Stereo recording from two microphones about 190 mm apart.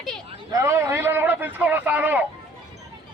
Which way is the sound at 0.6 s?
15° right (ahead or behind).